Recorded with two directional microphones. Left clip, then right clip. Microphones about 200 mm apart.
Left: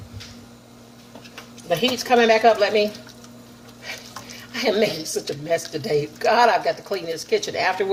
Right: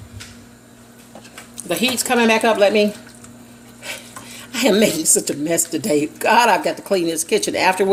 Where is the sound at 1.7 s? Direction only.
50° right (ahead or behind).